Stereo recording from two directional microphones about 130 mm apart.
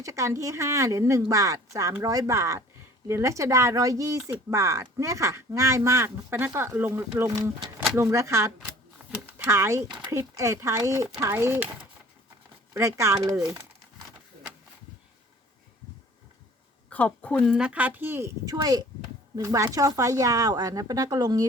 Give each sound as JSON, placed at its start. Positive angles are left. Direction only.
{"t": 0.0, "sound": "speech", "side_deg": -25}
{"t": 16.9, "sound": "a woman's voice", "side_deg": 10}
{"t": 17.5, "sound": "speech", "side_deg": -10}